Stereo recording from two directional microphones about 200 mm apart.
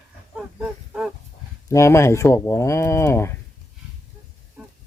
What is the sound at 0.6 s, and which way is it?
Livestock, 5° right (ahead or behind).